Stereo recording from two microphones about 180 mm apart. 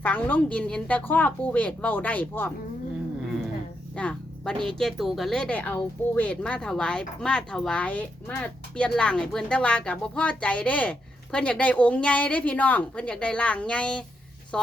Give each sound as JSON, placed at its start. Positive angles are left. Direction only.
{"t": 0.0, "sound": "a woman's voice", "side_deg": 10}
{"t": 3.9, "sound": "music", "side_deg": 5}
{"t": 4.6, "sound": "speech", "side_deg": 5}